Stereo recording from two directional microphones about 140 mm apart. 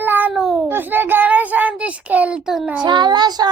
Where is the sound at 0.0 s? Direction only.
15° right (ahead or behind).